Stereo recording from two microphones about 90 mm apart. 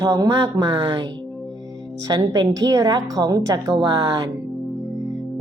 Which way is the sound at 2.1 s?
50° right (ahead or behind).